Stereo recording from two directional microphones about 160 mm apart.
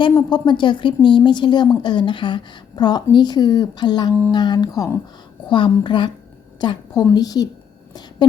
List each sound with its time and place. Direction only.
0.2 s a woman's voice: 30° left (ahead or behind)